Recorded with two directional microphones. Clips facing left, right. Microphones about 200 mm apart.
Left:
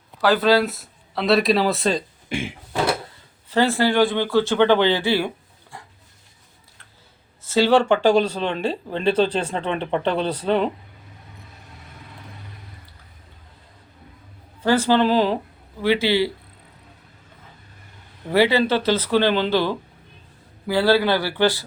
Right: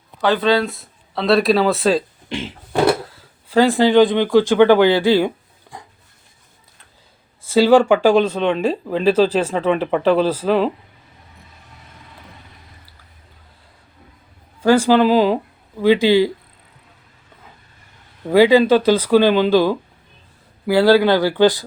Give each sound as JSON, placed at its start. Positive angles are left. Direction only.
{"t": 0.2, "sound": "speech", "side_deg": 0}
{"t": 2.3, "sound": "a sound", "side_deg": 10}
{"t": 3.5, "sound": "speech", "side_deg": -15}
{"t": 7.4, "sound": "speech", "side_deg": -10}
{"t": 14.6, "sound": "speech", "side_deg": -10}
{"t": 18.3, "sound": "speech", "side_deg": -15}